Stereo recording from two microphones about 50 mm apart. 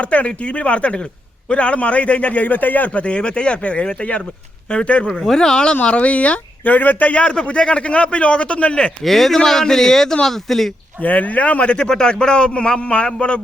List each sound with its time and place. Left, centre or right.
0.0 s a man's voice: left
3.0 s a man's voice: left
5.1 s a man's voice: centre
5.7 s a man's voice: left
9.0 s a man's voice: centre
11.0 s a man's voice: left